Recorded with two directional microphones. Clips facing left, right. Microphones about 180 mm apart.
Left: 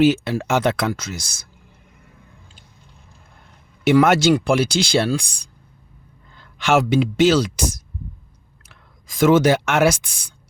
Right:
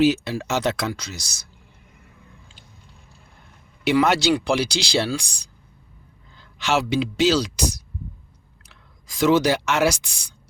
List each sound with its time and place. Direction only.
0.0 s speech: 50° left (ahead or behind)
3.8 s speech: 50° left (ahead or behind)